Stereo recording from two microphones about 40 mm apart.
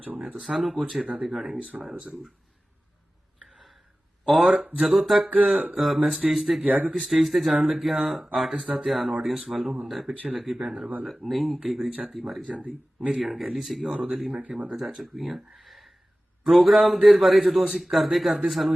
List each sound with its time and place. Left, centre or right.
0.4 s a man's voice: centre
4.3 s a man's voice: centre
4.5 s speech: right
4.9 s a man's voice: centre
6.7 s speech: right
7.0 s a man's voice: centre
8.5 s speech: centre
8.9 s a man's voice: centre
12.5 s speech: right
13.2 s a man's voice: centre
13.9 s a man's voice: centre
15.5 s a sound: centre
16.4 s a man's voice: centre